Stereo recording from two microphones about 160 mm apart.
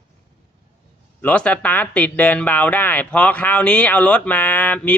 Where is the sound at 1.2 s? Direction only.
10° left (ahead or behind).